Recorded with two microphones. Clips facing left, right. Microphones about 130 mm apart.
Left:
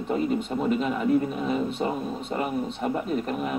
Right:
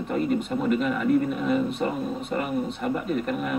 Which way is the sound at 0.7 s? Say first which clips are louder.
Right 1 dB; 35° left (ahead or behind).